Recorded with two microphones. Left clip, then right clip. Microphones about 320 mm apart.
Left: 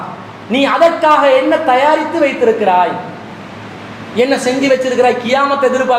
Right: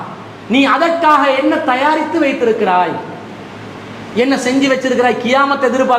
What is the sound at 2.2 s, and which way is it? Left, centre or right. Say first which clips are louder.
Speech: left 2 dB; right.